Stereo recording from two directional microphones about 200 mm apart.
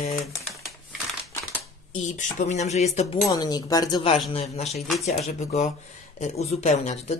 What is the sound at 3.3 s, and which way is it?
Speech, 20° left (ahead or behind).